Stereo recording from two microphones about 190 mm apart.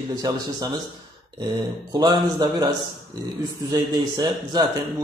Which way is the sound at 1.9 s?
20° right (ahead or behind).